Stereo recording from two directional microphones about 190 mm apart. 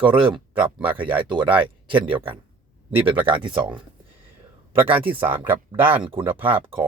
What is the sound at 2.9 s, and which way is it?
Speech, 30° right (ahead or behind).